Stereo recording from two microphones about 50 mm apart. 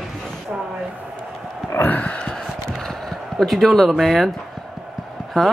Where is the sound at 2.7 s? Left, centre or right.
Centre.